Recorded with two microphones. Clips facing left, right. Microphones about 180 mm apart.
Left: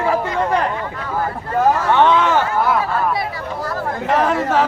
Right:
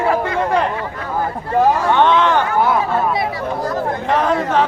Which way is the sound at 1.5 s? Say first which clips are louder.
Right 1 dB; 15° right (ahead or behind).